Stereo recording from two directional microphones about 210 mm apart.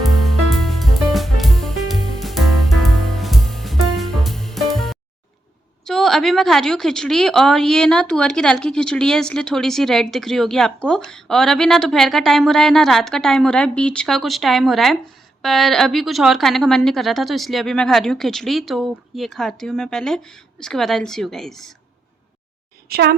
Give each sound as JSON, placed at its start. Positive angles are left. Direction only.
{"t": 0.2, "sound": "music", "side_deg": 0}
{"t": 5.8, "sound": "a woman's voice", "side_deg": 0}
{"t": 22.9, "sound": "a child's voice", "side_deg": -50}